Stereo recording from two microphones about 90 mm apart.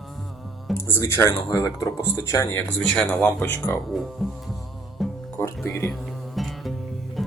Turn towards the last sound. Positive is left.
turn(degrees=0)  # may be behind; listen again after turning